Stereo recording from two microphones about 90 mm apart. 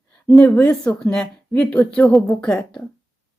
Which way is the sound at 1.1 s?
5° left (ahead or behind).